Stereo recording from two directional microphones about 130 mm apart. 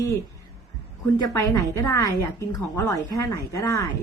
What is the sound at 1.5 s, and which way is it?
A woman's voice, 25° left (ahead or behind).